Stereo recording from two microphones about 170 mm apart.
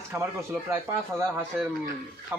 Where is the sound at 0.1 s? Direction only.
15° right (ahead or behind).